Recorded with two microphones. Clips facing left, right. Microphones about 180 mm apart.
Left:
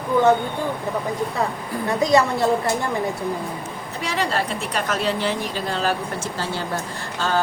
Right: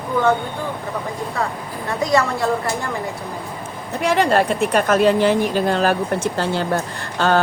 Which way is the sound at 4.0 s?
55° right (ahead or behind).